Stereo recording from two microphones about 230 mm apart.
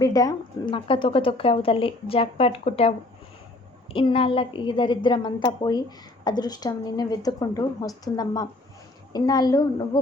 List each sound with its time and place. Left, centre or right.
0.0 s a woman's voice: centre
3.9 s a woman's voice: left